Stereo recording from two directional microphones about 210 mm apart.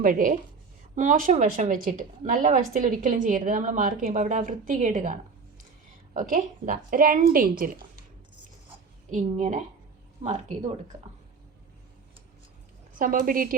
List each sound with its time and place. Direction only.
0.0 s speech: 40° right (ahead or behind)
6.1 s speech: 40° right (ahead or behind)
9.0 s speech: 35° right (ahead or behind)
13.0 s speech: 40° right (ahead or behind)